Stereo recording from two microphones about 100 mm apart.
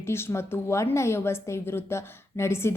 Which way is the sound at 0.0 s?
25° left (ahead or behind).